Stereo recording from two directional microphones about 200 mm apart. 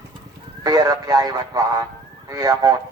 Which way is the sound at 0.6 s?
20° right (ahead or behind).